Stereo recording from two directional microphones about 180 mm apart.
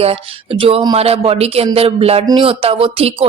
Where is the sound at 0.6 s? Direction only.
25° right (ahead or behind).